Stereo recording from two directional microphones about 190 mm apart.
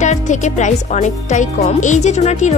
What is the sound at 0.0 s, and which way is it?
Speech, 40° left (ahead or behind).